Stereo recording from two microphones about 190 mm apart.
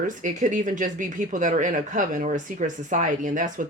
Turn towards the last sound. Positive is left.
turn(degrees=-45)  # may be behind; listen again after turning